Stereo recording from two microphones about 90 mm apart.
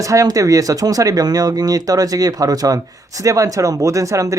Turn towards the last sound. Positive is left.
turn(degrees=-35)  # may be behind; listen again after turning